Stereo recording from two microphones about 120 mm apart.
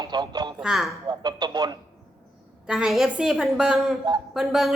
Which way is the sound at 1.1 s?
35° right (ahead or behind).